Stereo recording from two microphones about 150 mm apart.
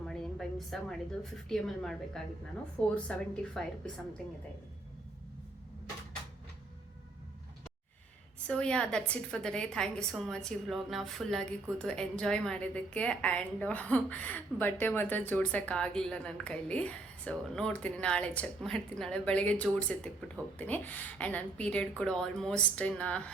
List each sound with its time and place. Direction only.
0.0 s a woman's voice: centre (ahead or behind)
8.4 s a woman's voice: 5° left (ahead or behind)